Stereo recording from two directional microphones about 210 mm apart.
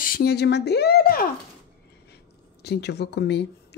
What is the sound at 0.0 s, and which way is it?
Speech, 45° left (ahead or behind).